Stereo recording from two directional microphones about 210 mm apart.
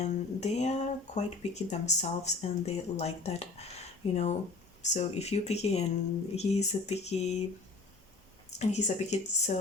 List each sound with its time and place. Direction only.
0.0 s speech: 30° left (ahead or behind)
8.4 s speech: 30° left (ahead or behind)